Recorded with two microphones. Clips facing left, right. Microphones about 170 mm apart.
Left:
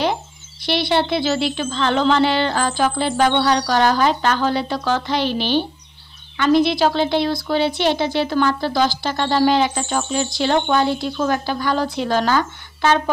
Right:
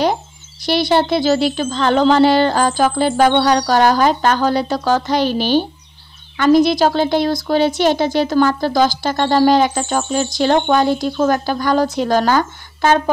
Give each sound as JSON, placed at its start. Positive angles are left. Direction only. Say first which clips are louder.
{"t": 0.0, "sound": "a child's voice", "louder": "right 4 dB", "side_deg": -40}